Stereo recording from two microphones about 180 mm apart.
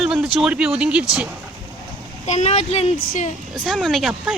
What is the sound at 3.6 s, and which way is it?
Speech, centre (ahead or behind).